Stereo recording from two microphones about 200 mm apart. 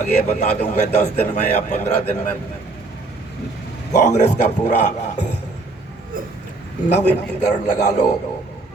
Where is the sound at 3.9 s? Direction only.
35° left (ahead or behind).